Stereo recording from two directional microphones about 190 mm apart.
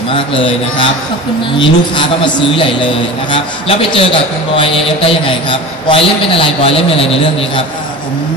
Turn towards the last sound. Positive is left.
turn(degrees=30)  # may be behind; listen again after turning